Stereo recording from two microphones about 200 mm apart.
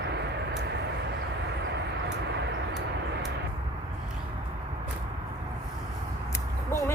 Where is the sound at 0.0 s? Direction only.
60° right (ahead or behind).